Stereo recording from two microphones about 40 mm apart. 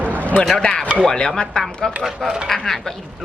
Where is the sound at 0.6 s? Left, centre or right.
Left.